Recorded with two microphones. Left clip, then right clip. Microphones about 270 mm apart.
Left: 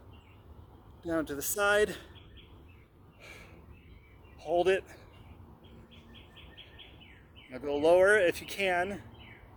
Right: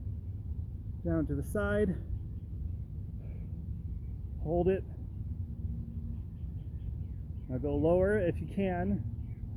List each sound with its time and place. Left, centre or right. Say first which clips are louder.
1.0 s speech: left 2 dB; centre
4.5 s speech: left 3 dB; centre
7.5 s speech: left 4 dB; centre